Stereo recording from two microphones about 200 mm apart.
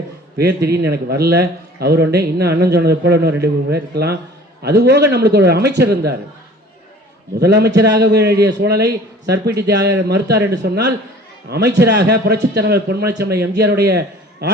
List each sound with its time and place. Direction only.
0.3 s a man's voice: 55° right (ahead or behind)
7.3 s a man's voice: 55° right (ahead or behind)